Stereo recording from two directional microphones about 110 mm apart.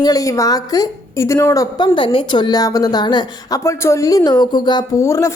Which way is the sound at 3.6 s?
25° left (ahead or behind).